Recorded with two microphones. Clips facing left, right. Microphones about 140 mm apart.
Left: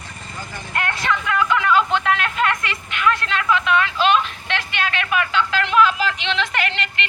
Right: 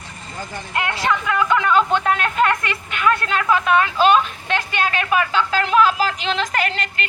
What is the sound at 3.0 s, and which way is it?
A woman's voice, 40° right (ahead or behind).